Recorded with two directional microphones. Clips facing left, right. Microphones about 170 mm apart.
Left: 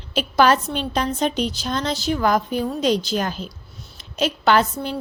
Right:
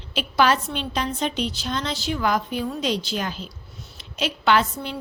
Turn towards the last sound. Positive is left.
turn(degrees=40)  # may be behind; listen again after turning